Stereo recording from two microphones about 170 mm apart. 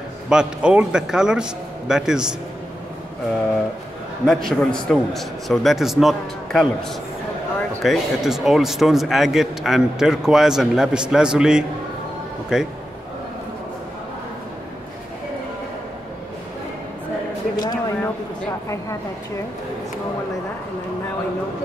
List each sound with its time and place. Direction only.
0.3 s speech: 5° right (ahead or behind)
4.3 s speech: centre (ahead or behind)
7.8 s speech: centre (ahead or behind)
17.6 s a sound: 20° left (ahead or behind)